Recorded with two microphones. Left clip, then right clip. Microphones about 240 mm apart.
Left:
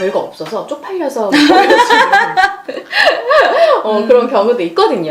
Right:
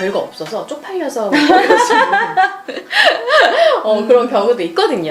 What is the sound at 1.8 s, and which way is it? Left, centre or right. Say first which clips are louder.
Speech: left 3 dB; left.